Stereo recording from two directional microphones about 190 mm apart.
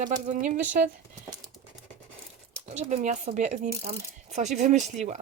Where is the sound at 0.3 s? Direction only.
40° right (ahead or behind).